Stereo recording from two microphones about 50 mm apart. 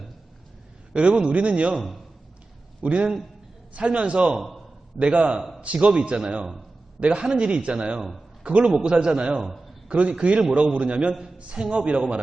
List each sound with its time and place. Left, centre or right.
0.9 s a man's voice: right
1.7 s a man's voice: centre
2.8 s a man's voice: right
4.4 s a man's voice: centre
4.9 s a man's voice: right
9.4 s a man's voice: centre
9.9 s a man's voice: right